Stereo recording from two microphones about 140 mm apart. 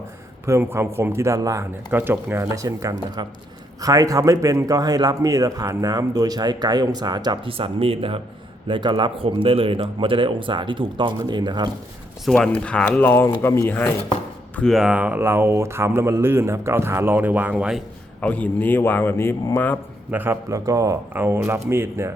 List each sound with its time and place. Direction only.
0.4 s a man's voice: 20° right (ahead or behind)
12.2 s speech: 5° left (ahead or behind)
14.5 s speech: 5° left (ahead or behind)
18.2 s speech: 10° left (ahead or behind)
20.1 s speech: 15° right (ahead or behind)